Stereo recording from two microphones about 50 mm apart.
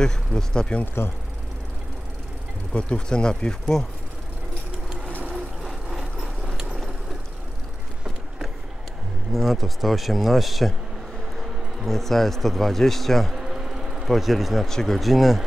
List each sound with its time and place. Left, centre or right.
0.0 s speech: centre
2.7 s speech: centre
5.7 s vehicle: centre
9.3 s speech: centre
13.4 s a sound: centre
14.7 s speech: centre